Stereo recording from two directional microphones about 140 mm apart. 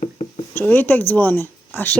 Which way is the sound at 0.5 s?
15° left (ahead or behind).